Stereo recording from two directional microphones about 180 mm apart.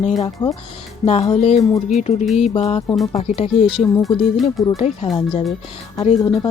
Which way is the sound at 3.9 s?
Centre (ahead or behind).